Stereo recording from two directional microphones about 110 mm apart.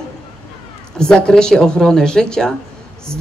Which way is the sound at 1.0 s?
5° left (ahead or behind).